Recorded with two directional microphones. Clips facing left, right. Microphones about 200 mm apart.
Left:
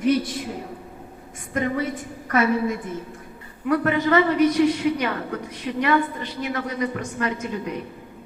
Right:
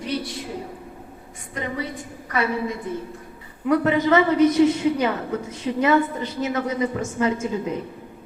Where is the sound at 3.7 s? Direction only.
20° right (ahead or behind).